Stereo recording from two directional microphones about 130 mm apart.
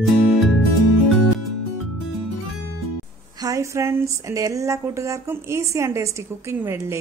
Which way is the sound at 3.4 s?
25° right (ahead or behind).